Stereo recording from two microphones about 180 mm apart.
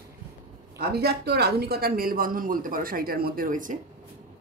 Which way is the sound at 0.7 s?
60° right (ahead or behind).